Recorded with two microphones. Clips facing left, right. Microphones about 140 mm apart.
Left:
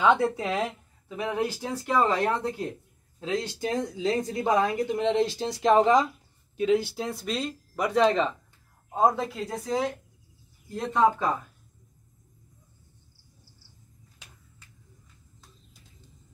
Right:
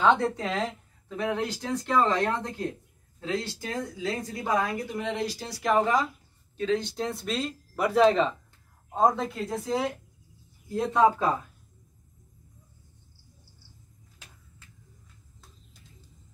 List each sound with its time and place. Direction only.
0.0 s a woman's voice: 5° left (ahead or behind)